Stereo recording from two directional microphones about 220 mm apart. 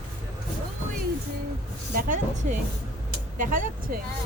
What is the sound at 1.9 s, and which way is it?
A woman's voice, 35° right (ahead or behind).